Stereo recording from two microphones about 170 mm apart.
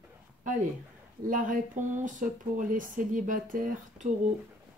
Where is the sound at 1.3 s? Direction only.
50° right (ahead or behind).